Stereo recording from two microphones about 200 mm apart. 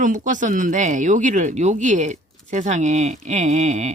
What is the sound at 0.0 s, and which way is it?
Speech, 40° right (ahead or behind).